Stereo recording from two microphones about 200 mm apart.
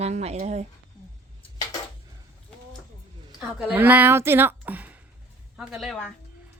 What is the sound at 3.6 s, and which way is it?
Speech, 10° right (ahead or behind).